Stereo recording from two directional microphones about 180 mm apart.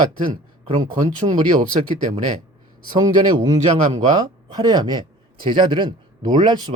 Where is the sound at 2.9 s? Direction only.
25° right (ahead or behind).